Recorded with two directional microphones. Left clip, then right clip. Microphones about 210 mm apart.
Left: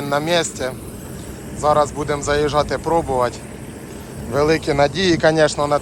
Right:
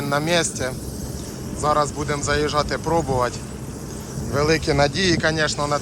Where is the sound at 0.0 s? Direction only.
10° right (ahead or behind).